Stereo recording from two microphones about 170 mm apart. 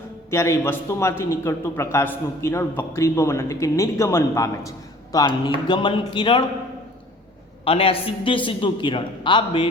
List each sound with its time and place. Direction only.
0.3 s a man's voice: 15° left (ahead or behind)
7.6 s a man's voice: 35° left (ahead or behind)